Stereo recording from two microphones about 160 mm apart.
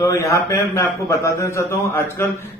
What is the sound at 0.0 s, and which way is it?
A man's voice, 20° left (ahead or behind).